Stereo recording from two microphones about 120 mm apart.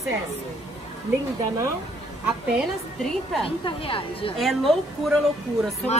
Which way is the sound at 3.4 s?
50° left (ahead or behind).